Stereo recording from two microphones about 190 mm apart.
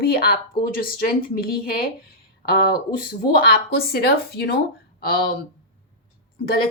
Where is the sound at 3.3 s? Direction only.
55° left (ahead or behind).